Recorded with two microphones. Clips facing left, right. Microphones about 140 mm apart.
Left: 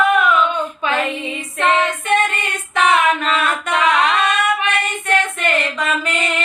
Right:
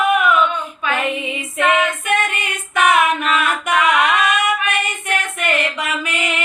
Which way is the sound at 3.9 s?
10° right (ahead or behind).